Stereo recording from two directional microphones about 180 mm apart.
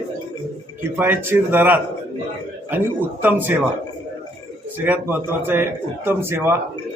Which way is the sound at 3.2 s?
10° right (ahead or behind).